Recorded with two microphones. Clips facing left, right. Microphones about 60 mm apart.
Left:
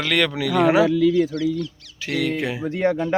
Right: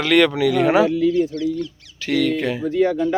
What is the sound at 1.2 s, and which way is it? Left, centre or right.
Speech, left.